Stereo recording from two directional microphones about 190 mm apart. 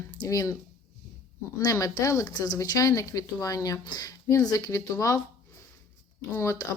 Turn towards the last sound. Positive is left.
turn(degrees=15)  # may be behind; listen again after turning